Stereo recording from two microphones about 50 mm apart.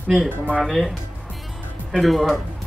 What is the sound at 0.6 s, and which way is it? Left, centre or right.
Speech, centre.